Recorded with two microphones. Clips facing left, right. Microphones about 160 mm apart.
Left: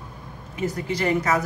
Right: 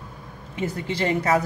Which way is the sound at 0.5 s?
30° right (ahead or behind).